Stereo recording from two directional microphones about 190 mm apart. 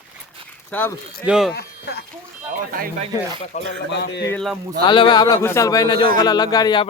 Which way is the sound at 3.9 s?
65° left (ahead or behind).